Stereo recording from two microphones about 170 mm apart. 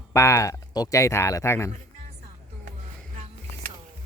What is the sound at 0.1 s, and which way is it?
Speech, 15° left (ahead or behind).